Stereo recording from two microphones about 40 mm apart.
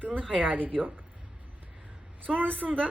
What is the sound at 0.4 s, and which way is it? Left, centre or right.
Speech, right.